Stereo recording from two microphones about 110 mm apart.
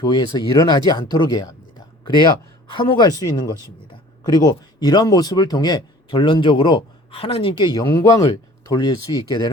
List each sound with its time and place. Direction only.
0.0 s speech: 40° left (ahead or behind)